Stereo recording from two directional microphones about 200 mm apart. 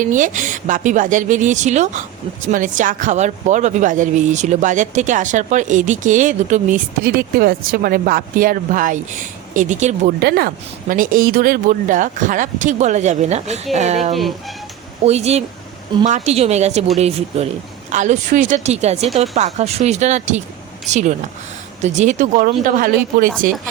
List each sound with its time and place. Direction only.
0.0 s speech: 40° right (ahead or behind)
10.2 s speech: 55° right (ahead or behind); by 14.1 s 35° right (ahead or behind)
14.1 s speech: centre (ahead or behind)
15.0 s speech: 30° right (ahead or behind)